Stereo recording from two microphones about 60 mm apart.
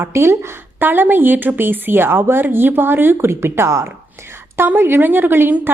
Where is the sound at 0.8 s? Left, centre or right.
Right.